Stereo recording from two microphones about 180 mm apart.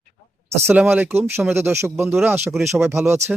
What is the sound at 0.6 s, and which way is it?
Speech, 10° right (ahead or behind).